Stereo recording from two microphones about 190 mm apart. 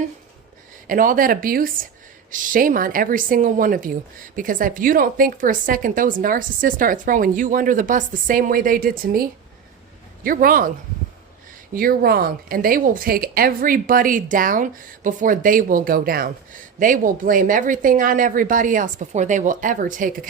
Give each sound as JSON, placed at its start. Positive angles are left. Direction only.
{"t": 0.9, "sound": "speech", "side_deg": -45}
{"t": 10.2, "sound": "speech", "side_deg": -45}
{"t": 11.7, "sound": "speech", "side_deg": -50}